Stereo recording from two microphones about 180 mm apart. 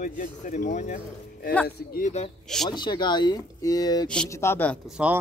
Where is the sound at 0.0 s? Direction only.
45° left (ahead or behind).